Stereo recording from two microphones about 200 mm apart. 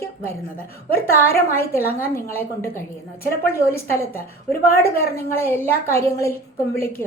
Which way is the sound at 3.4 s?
50° left (ahead or behind).